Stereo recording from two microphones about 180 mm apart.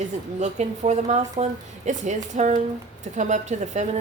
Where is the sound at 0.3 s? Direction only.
40° right (ahead or behind).